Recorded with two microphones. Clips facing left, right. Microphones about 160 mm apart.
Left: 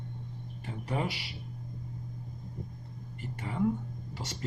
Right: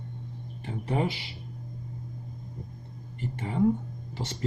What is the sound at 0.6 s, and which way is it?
Speech, 25° right (ahead or behind).